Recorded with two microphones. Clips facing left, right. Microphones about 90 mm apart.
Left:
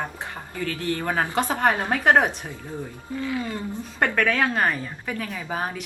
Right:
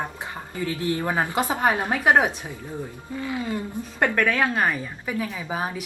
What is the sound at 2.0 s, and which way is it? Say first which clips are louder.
Speech: even; 5° right (ahead or behind).